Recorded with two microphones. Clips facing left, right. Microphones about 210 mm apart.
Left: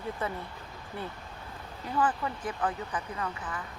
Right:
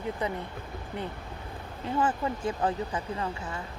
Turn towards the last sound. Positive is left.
turn(degrees=-25)  # may be behind; listen again after turning